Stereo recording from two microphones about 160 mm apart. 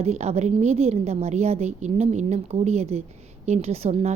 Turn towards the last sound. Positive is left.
turn(degrees=-40)  # may be behind; listen again after turning